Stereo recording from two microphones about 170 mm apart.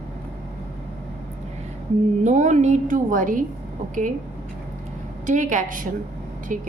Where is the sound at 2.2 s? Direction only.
45° right (ahead or behind).